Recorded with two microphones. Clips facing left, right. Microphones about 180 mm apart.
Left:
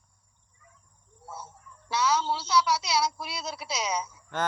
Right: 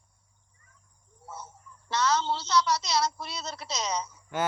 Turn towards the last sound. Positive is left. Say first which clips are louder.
# left 1 dB
turn(degrees=10)  # may be behind; listen again after turning